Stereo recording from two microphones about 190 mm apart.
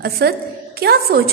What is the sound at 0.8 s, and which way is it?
Speech, 55° right (ahead or behind).